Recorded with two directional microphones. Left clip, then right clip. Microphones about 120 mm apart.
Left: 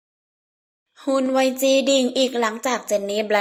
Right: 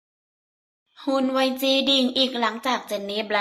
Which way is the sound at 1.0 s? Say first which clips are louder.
Left 3 dB; 30° left (ahead or behind).